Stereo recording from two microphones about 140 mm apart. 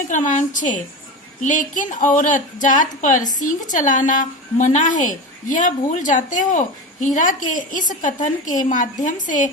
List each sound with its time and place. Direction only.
0.1 s a woman's voice: 65° left (ahead or behind)